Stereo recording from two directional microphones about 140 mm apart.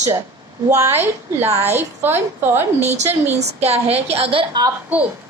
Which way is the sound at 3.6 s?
50° right (ahead or behind).